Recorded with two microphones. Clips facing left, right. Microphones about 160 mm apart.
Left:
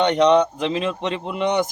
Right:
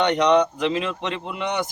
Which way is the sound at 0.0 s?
20° left (ahead or behind).